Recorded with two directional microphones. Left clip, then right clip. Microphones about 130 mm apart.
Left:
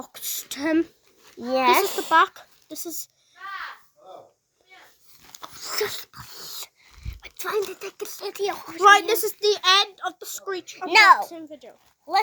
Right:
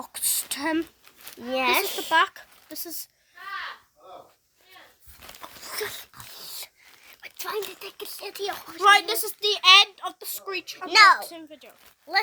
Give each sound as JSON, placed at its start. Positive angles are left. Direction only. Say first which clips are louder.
{"t": 0.0, "sound": "a sound", "louder": "right 3 dB", "side_deg": -10}
{"t": 1.4, "sound": "a child's voice", "louder": "left 4 dB", "side_deg": 25}
{"t": 5.4, "sound": "dog", "louder": "left 5 dB", "side_deg": 35}
{"t": 7.2, "sound": "a sound", "louder": "left 5 dB", "side_deg": 10}
{"t": 7.6, "sound": "a child's voice", "louder": "left 5 dB", "side_deg": 0}
{"t": 7.9, "sound": "a child's voice", "louder": "left 5 dB", "side_deg": 25}
{"t": 9.7, "sound": "a child's voice", "louder": "right 4 dB", "side_deg": -5}